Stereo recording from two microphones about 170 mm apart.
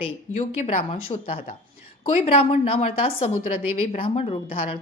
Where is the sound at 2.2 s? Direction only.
35° left (ahead or behind).